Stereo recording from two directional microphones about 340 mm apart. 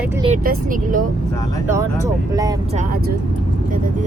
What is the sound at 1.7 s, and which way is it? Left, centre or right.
Speech, centre.